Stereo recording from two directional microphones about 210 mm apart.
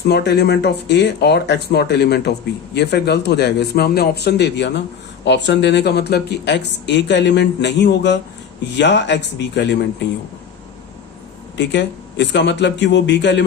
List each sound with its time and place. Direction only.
0.0 s speech: 50° left (ahead or behind)
11.5 s speech: 55° left (ahead or behind)